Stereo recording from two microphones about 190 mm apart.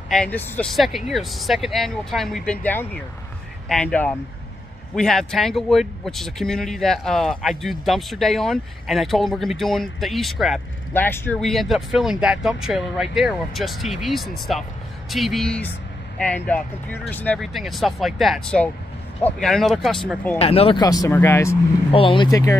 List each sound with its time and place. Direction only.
0.1 s speech: 5° left (ahead or behind)
10.9 s speech: 10° left (ahead or behind)
20.3 s speech: 30° left (ahead or behind); by 21.5 s 15° left (ahead or behind)
21.9 s speech: 25° left (ahead or behind)